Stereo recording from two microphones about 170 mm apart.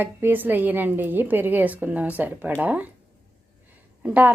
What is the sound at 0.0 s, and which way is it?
A woman's voice, 10° right (ahead or behind).